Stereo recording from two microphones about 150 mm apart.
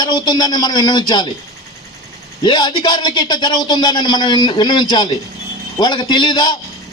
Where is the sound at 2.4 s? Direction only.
30° left (ahead or behind).